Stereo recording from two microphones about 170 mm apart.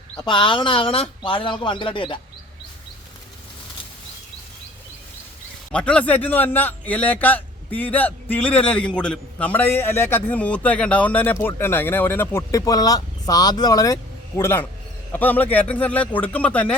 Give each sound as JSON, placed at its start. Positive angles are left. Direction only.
{"t": 0.2, "sound": "speech", "side_deg": 30}
{"t": 5.7, "sound": "a man's voice", "side_deg": 5}